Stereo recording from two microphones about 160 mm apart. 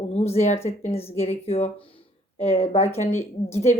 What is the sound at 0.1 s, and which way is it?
A woman's voice, 45° left (ahead or behind).